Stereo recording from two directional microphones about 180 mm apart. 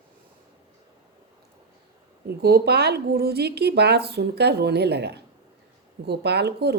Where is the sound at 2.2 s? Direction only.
65° right (ahead or behind).